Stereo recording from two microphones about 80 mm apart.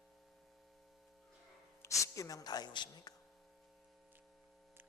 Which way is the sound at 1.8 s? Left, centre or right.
Left.